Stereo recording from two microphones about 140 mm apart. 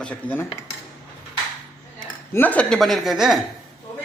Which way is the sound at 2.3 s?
10° left (ahead or behind).